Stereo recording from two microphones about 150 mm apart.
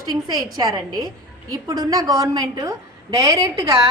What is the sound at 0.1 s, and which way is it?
A woman's voice, 25° right (ahead or behind).